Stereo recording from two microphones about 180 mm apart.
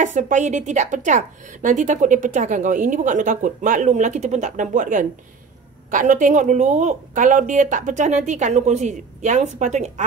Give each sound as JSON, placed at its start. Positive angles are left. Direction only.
{"t": 0.0, "sound": "a woman's voice", "side_deg": -45}